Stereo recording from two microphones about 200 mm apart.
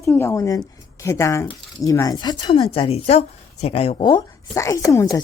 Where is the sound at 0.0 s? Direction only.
15° left (ahead or behind).